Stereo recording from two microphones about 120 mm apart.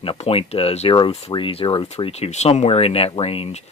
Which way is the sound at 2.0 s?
60° left (ahead or behind).